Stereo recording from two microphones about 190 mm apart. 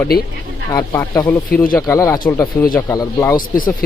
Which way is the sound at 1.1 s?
10° left (ahead or behind).